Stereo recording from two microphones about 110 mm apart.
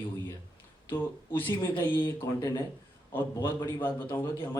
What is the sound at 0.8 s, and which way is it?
A man's voice, 20° left (ahead or behind).